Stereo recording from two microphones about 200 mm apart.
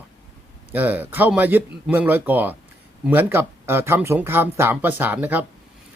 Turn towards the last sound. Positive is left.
turn(degrees=-10)  # may be behind; listen again after turning